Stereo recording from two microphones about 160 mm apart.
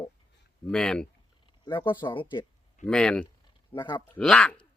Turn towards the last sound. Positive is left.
turn(degrees=5)  # may be behind; listen again after turning